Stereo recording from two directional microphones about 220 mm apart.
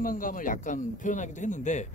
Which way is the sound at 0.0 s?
40° left (ahead or behind).